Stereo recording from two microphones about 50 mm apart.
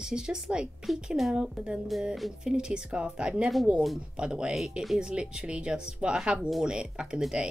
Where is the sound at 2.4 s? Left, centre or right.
Centre.